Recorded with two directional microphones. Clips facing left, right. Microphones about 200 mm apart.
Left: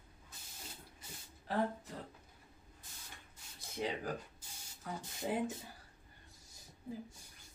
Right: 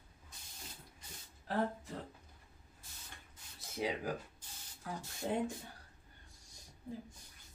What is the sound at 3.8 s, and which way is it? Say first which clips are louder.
Speech: right 1 dB; 10° right (ahead or behind).